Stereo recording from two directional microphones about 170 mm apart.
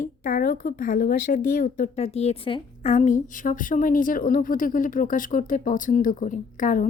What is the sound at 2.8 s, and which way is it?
A woman's voice, 45° left (ahead or behind).